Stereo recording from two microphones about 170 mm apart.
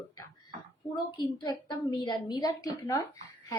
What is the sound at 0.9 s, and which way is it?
A woman's voice, 25° left (ahead or behind).